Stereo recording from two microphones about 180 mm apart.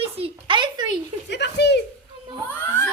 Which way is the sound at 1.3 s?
70° left (ahead or behind).